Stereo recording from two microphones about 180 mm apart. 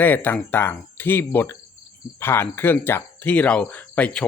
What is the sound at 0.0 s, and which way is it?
Speech, 10° left (ahead or behind).